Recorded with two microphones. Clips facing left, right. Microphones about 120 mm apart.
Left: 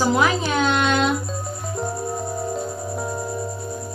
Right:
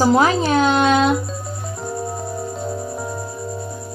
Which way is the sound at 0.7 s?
40° right (ahead or behind).